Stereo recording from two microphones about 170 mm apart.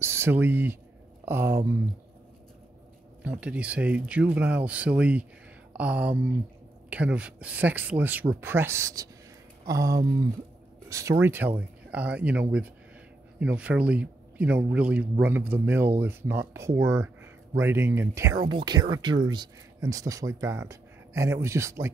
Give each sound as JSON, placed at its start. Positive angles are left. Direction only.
{"t": 0.0, "sound": "speech", "side_deg": -15}
{"t": 3.3, "sound": "speech", "side_deg": -5}